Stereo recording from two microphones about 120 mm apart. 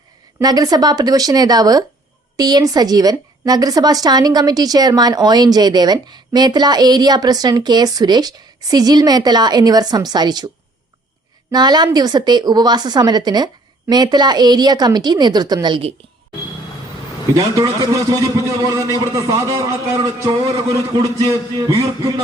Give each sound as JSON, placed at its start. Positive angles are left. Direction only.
{"t": 0.4, "sound": "a woman's voice", "side_deg": -35}
{"t": 11.5, "sound": "a woman's voice", "side_deg": -35}
{"t": 17.3, "sound": "a man's voice", "side_deg": -25}